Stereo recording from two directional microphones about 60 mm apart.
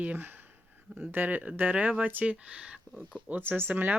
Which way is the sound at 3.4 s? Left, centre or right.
Right.